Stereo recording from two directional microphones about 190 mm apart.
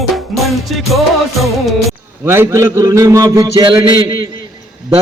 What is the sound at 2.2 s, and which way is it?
A man's voice, 15° right (ahead or behind).